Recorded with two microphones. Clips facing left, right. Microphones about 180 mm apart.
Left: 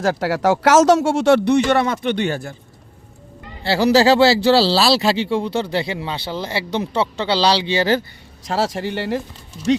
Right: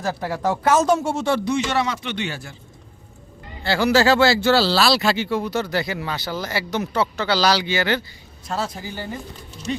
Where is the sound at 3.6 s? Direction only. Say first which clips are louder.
Left 3 dB; 35° left (ahead or behind).